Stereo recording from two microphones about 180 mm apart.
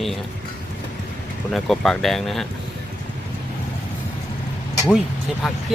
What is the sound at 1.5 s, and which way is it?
Speech, centre (ahead or behind).